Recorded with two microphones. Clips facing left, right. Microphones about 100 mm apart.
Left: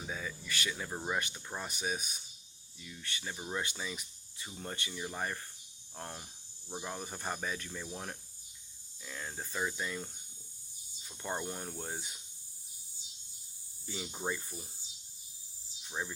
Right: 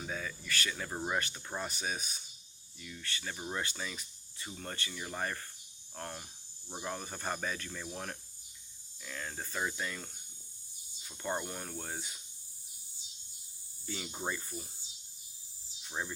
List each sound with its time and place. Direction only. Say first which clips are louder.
0.1 s speech: even; 10° left (ahead or behind)
0.9 s speech: right 2 dB; 5° right (ahead or behind); by 3.3 s 15° left (ahead or behind)
3.3 s speech: left 1 dB; centre (ahead or behind)
3.6 s speech: even; 15° left (ahead or behind)
11.2 s speech: right 1 dB; 5° left (ahead or behind)
13.8 s speech: left 1 dB; 10° left (ahead or behind)
15.8 s speech: even; centre (ahead or behind)